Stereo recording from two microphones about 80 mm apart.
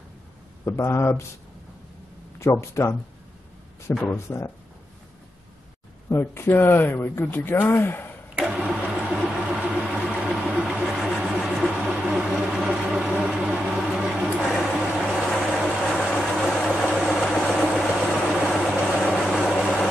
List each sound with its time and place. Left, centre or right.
0.7 s speech: left
2.6 s speech: left
3.9 s speech: centre
6.0 s speech: left
8.4 s vehicle: centre
12.0 s a sound: centre
15.6 s vehicle: centre